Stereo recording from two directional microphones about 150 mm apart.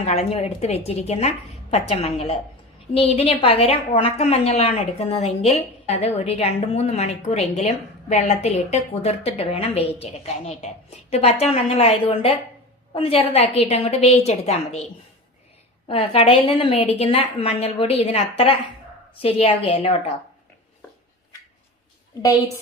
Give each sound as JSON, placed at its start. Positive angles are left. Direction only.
{"t": 0.0, "sound": "a woman's voice", "side_deg": 45}
{"t": 15.9, "sound": "a woman's voice", "side_deg": 40}